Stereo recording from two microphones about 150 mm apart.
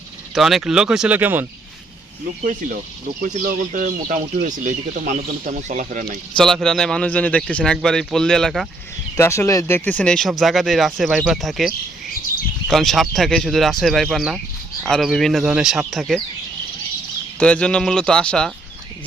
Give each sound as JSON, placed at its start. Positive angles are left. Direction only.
{"t": 0.3, "sound": "speech", "side_deg": 0}
{"t": 3.4, "sound": "speech", "side_deg": -65}
{"t": 6.3, "sound": "speech", "side_deg": 5}
{"t": 9.1, "sound": "speech", "side_deg": 20}
{"t": 17.4, "sound": "speech", "side_deg": 5}